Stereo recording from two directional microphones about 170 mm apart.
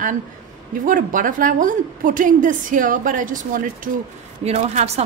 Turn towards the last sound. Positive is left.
turn(degrees=-40)  # may be behind; listen again after turning